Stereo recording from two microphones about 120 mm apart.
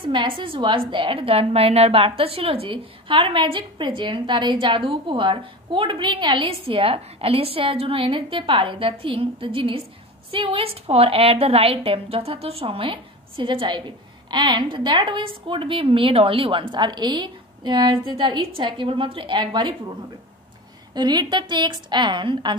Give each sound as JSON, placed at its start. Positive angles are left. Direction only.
{"t": 0.0, "sound": "a woman's voice", "side_deg": -45}
{"t": 20.9, "sound": "a woman's voice", "side_deg": -35}